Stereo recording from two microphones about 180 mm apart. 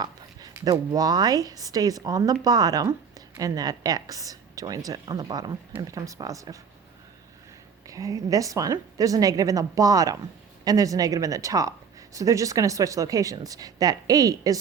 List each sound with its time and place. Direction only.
0.0 s speech: 20° right (ahead or behind)
7.9 s speech: 20° right (ahead or behind)